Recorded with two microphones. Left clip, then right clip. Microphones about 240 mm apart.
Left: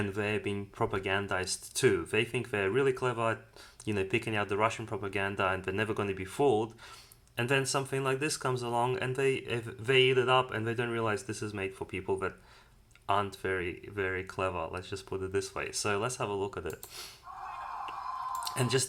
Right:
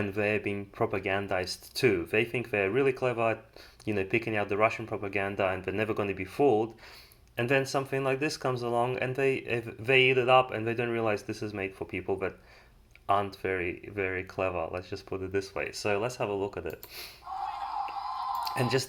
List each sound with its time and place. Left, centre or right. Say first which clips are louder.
0.3 s speech: right 3 dB; centre
17.4 s a sound: right 5 dB; right
18.4 s speech: right 2 dB; left